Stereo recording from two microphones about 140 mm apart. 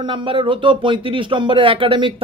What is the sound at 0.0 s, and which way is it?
Speech, 35° right (ahead or behind).